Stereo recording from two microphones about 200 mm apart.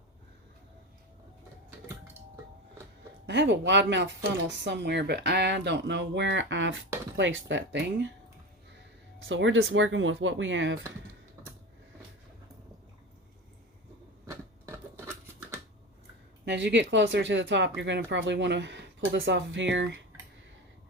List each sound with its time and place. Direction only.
3.2 s speech: 65° right (ahead or behind)
9.3 s speech: 75° right (ahead or behind)
14.3 s scissors: 15° right (ahead or behind)
16.5 s speech: 60° right (ahead or behind)